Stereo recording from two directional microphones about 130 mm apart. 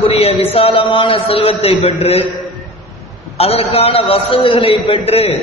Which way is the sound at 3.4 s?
50° left (ahead or behind).